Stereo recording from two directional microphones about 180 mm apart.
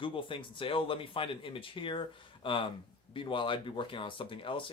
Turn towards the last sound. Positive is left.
turn(degrees=30)  # may be behind; listen again after turning